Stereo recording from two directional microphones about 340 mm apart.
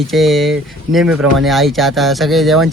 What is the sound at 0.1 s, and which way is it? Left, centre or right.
Speech, centre.